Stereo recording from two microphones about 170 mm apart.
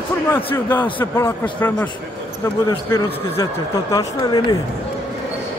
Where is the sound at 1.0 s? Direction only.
10° left (ahead or behind).